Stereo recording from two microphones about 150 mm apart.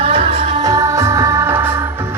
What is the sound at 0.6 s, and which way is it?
Music, 20° right (ahead or behind).